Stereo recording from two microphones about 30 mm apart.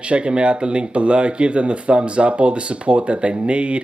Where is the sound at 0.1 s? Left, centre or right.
Right.